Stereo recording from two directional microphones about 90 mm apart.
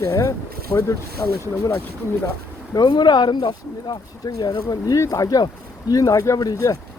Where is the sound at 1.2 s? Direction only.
45° left (ahead or behind).